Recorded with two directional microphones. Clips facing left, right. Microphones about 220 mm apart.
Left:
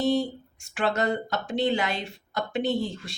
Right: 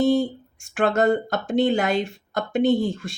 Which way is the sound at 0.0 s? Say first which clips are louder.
Right 5 dB; 50° right (ahead or behind).